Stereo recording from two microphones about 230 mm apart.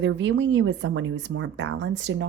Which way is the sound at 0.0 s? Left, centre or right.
Right.